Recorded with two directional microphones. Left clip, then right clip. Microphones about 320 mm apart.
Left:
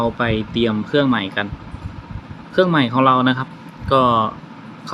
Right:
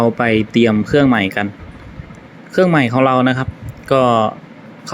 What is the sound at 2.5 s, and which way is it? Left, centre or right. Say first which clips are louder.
Speech: right 3 dB; centre.